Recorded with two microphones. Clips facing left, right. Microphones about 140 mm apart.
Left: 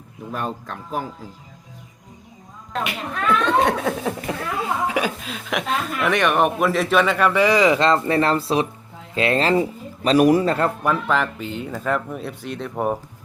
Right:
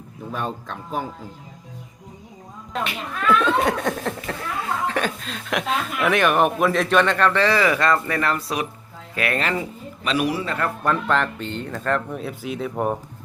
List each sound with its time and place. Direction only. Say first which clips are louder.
0.3 s speech: left 1 dB; centre (ahead or behind)
2.7 s speech: left 2 dB; centre (ahead or behind); by 10.6 s 40° left (ahead or behind)
10.8 s speech: even; 5° left (ahead or behind)